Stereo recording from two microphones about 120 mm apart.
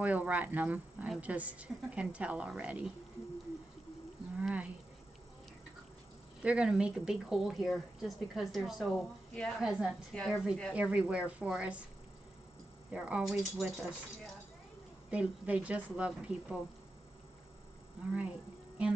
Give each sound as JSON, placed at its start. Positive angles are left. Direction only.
{"t": 0.0, "sound": "a woman's voice", "side_deg": -10}
{"t": 4.4, "sound": "a sound", "side_deg": -10}
{"t": 6.4, "sound": "a woman's voice", "side_deg": -10}
{"t": 9.6, "sound": "a woman's voice", "side_deg": -5}
{"t": 12.9, "sound": "a woman's voice", "side_deg": -10}
{"t": 15.0, "sound": "a woman's voice", "side_deg": -10}